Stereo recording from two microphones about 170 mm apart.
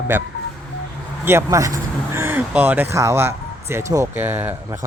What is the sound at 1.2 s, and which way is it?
Speech, 15° right (ahead or behind).